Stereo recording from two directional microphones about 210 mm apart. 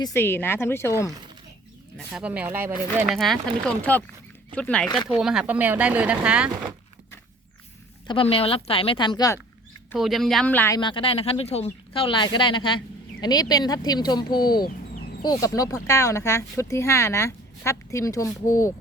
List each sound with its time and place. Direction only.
0.0 s speech: 10° left (ahead or behind)
2.1 s speech: 5° right (ahead or behind)
8.0 s speech: 25° left (ahead or behind)
9.9 s speech: centre (ahead or behind)
10.8 s speech: 25° left (ahead or behind)